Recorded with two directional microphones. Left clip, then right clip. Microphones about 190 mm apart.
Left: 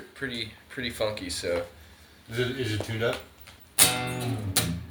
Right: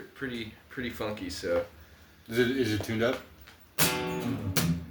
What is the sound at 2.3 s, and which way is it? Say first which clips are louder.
Speech: right 3 dB; 30° right (ahead or behind).